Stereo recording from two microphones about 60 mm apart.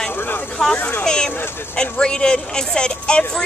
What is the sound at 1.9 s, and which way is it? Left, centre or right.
Speech, centre.